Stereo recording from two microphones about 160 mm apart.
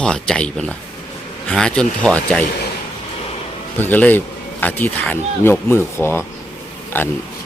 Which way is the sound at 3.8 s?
10° left (ahead or behind).